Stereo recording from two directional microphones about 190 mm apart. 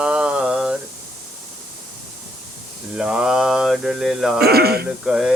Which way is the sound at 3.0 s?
5° right (ahead or behind).